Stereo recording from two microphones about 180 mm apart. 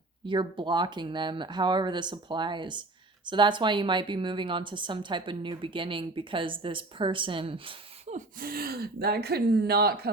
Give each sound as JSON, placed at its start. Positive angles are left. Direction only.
{"t": 0.3, "sound": "a woman's voice", "side_deg": -25}
{"t": 8.1, "sound": "speech", "side_deg": -55}